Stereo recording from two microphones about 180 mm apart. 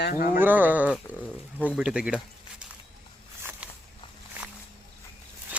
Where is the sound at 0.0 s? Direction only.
50° left (ahead or behind).